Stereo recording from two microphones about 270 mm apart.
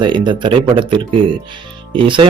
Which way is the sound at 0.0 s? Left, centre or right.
Centre.